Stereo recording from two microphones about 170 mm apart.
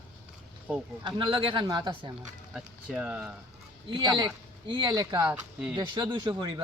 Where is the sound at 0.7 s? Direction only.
5° right (ahead or behind).